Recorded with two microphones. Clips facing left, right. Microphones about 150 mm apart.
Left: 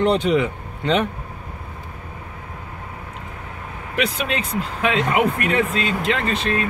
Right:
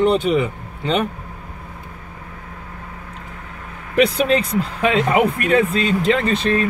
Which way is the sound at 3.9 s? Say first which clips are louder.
Right 8 dB; 35° right (ahead or behind).